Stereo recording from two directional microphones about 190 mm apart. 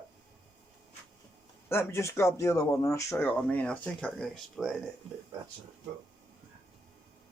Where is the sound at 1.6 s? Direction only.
15° left (ahead or behind).